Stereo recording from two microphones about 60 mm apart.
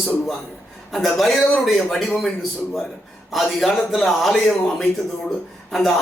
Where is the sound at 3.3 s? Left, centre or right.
Centre.